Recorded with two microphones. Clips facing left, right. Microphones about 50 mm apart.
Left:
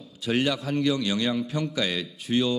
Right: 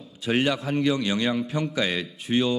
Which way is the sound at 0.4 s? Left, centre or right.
Centre.